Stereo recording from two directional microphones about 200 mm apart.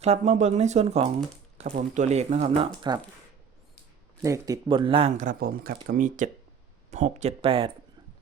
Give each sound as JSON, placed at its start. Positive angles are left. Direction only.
{"t": 0.0, "sound": "speech", "side_deg": -35}
{"t": 2.8, "sound": "speech", "side_deg": -20}
{"t": 4.2, "sound": "speech", "side_deg": -15}